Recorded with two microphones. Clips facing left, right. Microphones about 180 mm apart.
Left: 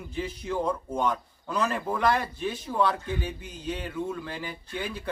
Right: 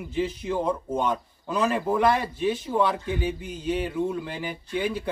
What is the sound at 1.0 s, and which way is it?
Speech, 25° right (ahead or behind).